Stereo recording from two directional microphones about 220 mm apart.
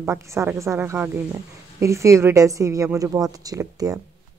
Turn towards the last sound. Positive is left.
turn(degrees=-15)  # may be behind; listen again after turning